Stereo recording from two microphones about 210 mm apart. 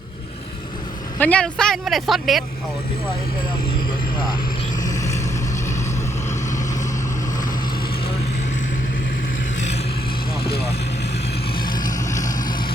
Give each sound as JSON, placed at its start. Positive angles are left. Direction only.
{"t": 1.2, "sound": "speech", "side_deg": 5}
{"t": 4.8, "sound": "vehicle", "side_deg": 15}
{"t": 11.6, "sound": "vehicle", "side_deg": 20}